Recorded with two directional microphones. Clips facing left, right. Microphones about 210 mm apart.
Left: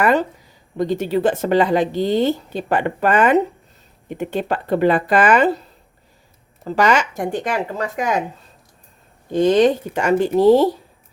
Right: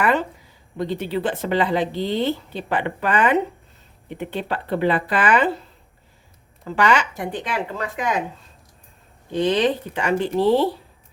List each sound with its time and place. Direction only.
0.0 s speech: 40° left (ahead or behind)
6.7 s speech: 40° left (ahead or behind)
9.3 s speech: 45° left (ahead or behind)